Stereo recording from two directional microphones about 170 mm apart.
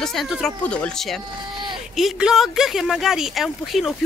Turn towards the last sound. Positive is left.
turn(degrees=0)  # may be behind; listen again after turning